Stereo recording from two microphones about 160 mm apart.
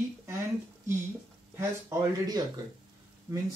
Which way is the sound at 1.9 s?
20° right (ahead or behind).